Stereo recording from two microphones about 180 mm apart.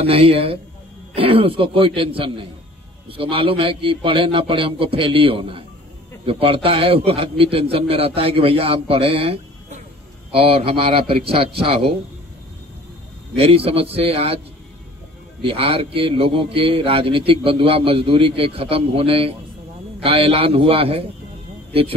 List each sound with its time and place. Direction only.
0.0 s a man's voice: 35° right (ahead or behind)
13.7 s a man's voice: 35° right (ahead or behind)
15.4 s a man's voice: 30° right (ahead or behind)